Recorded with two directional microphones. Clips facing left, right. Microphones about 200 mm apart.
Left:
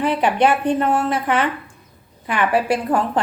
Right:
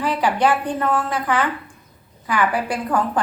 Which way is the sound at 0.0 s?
20° left (ahead or behind).